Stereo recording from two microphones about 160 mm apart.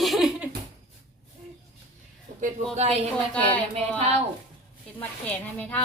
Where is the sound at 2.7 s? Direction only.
45° right (ahead or behind).